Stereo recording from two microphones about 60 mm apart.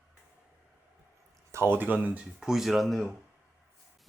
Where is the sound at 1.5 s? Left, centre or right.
Right.